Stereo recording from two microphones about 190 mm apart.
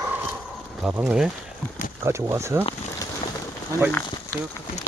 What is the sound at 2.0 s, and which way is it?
Speech, 15° right (ahead or behind).